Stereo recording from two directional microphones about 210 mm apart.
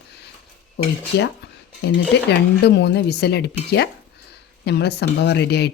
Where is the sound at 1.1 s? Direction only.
50° left (ahead or behind).